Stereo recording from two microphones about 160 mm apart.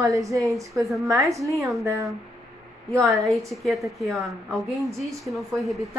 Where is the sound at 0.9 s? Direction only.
Centre (ahead or behind).